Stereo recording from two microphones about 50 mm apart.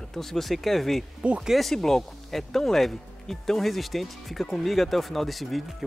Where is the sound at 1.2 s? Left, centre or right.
Right.